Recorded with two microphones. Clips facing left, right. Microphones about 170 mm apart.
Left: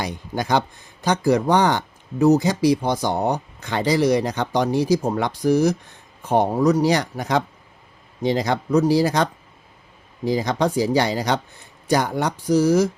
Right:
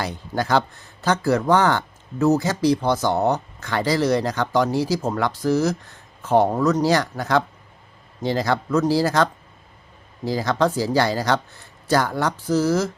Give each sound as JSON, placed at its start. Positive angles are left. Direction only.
{"t": 0.0, "sound": "speech", "side_deg": 15}